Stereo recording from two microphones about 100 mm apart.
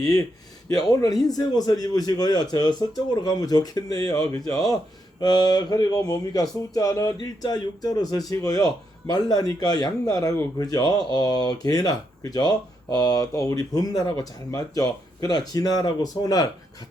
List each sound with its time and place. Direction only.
0.8 s speech: 40° left (ahead or behind)